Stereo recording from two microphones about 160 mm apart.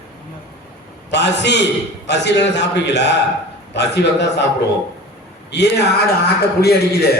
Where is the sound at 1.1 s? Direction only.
90° left.